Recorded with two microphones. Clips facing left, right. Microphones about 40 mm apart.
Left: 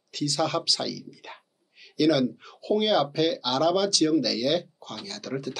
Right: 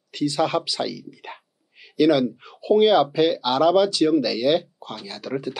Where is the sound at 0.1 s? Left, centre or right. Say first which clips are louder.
Right 5 dB; centre.